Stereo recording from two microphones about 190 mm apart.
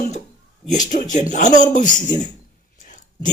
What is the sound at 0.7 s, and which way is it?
Speech, 40° left (ahead or behind).